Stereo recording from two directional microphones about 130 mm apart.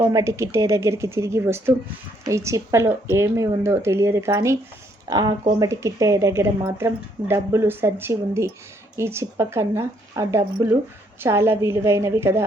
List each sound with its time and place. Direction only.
0.1 s speech: 25° right (ahead or behind)